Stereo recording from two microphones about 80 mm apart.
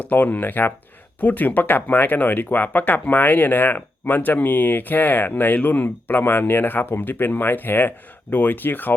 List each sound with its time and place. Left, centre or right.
0.1 s speech: left